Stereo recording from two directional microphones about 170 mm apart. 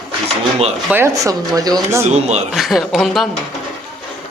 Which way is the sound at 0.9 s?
15° right (ahead or behind).